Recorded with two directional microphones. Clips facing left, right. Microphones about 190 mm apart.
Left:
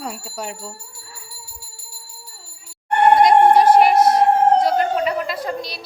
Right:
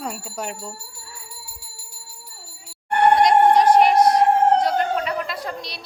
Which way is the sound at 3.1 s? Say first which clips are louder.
Left 3 dB; 5° left (ahead or behind).